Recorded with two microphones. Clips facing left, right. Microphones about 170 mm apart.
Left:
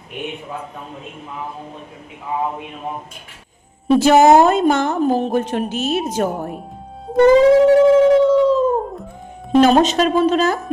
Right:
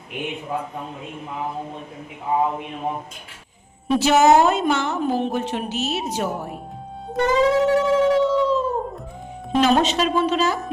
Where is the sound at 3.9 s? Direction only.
50° left (ahead or behind).